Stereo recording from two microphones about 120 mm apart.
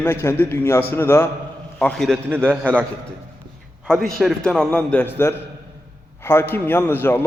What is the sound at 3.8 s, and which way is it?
A man's voice, 5° left (ahead or behind).